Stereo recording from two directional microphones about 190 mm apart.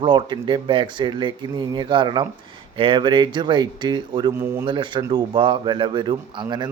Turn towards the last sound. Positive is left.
turn(degrees=-25)  # may be behind; listen again after turning